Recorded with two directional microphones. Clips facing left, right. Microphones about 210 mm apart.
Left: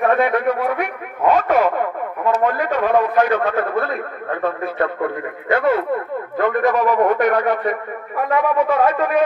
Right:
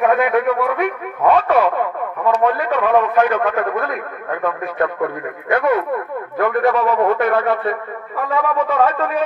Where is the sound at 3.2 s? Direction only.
30° left (ahead or behind).